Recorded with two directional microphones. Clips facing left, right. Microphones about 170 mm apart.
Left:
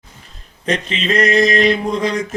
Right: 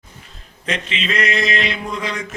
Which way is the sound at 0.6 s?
40° left (ahead or behind).